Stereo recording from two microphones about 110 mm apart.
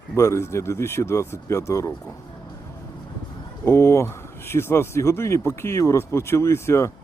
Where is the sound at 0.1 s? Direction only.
25° left (ahead or behind).